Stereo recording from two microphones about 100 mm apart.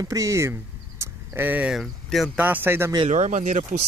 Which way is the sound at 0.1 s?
30° right (ahead or behind).